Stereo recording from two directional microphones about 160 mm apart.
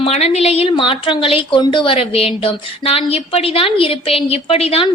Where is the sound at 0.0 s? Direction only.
40° left (ahead or behind).